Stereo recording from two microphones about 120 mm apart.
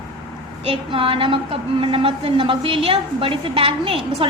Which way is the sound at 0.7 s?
50° right (ahead or behind).